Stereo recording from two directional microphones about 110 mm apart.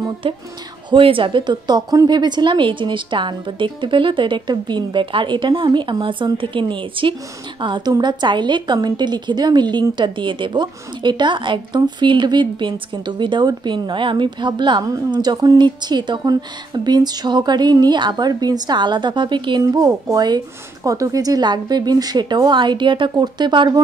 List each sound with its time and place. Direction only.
0.2 s a woman's voice: 55° right (ahead or behind)
19.6 s a woman's voice: 35° right (ahead or behind)